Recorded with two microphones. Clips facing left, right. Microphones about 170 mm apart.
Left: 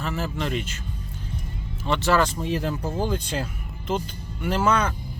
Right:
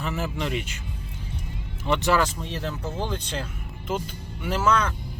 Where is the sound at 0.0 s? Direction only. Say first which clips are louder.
Left 1 dB; 15° right (ahead or behind).